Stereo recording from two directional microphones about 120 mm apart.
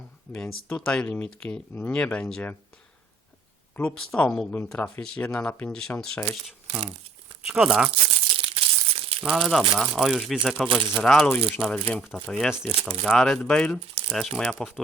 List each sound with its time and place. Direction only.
0.3 s speech: 15° left (ahead or behind)
0.7 s speech: 5° left (ahead or behind)
3.8 s speech: 5° left (ahead or behind)
7.4 s speech: 5° right (ahead or behind)
7.9 s a sound: 50° right (ahead or behind)
9.2 s speech: 10° right (ahead or behind); by 12.5 s 5° left (ahead or behind)
12.5 s speech: 5° right (ahead or behind)